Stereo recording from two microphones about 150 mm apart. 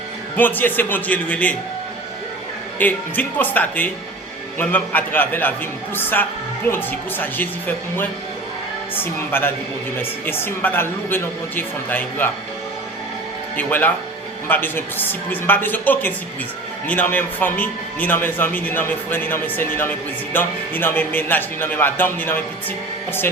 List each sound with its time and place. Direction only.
0.3 s a man's voice: 10° left (ahead or behind)
2.7 s a man's voice: 10° left (ahead or behind)
9.3 s a man's voice: 15° left (ahead or behind)
13.6 s a man's voice: 10° left (ahead or behind)